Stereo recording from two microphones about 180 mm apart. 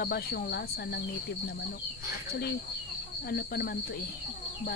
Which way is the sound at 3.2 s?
60° left (ahead or behind).